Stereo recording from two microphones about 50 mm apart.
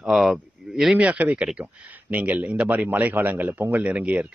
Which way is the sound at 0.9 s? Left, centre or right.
Right.